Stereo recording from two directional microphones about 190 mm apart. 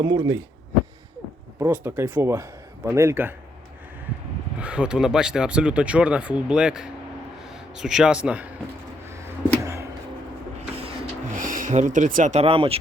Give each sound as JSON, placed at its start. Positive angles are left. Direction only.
{"t": 0.0, "sound": "speech", "side_deg": -20}
{"t": 1.5, "sound": "a man's voice", "side_deg": -15}
{"t": 4.5, "sound": "speech", "side_deg": -5}
{"t": 10.6, "sound": "vehicle", "side_deg": -30}
{"t": 11.3, "sound": "speech", "side_deg": -45}